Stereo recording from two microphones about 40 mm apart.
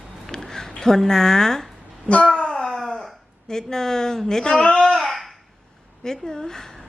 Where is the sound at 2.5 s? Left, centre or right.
Centre.